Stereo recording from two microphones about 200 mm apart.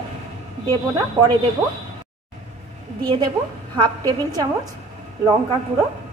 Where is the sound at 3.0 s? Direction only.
20° right (ahead or behind).